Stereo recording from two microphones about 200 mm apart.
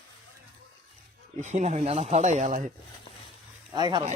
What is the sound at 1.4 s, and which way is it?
Speech, 35° right (ahead or behind).